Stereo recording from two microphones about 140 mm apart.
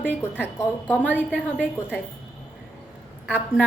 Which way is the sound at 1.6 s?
10° right (ahead or behind).